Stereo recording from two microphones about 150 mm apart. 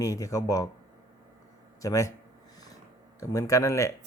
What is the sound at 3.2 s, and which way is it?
Speech, 20° left (ahead or behind).